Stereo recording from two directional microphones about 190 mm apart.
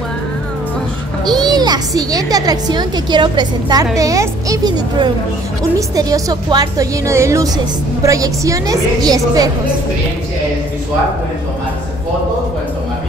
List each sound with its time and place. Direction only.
1.2 s a child's voice: 20° right (ahead or behind)